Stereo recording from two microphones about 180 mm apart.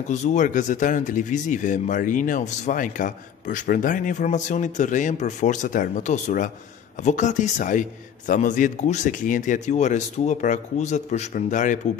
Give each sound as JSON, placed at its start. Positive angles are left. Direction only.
{"t": 0.1, "sound": "speech", "side_deg": 40}